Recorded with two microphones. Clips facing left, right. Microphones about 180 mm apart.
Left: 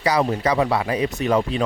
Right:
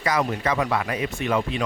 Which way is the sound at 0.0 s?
30° left (ahead or behind).